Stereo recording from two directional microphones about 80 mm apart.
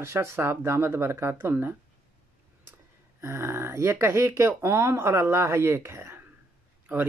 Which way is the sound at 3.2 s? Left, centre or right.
Right.